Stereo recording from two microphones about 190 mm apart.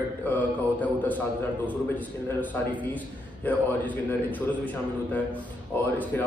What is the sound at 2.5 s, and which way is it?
A man's voice, 10° left (ahead or behind).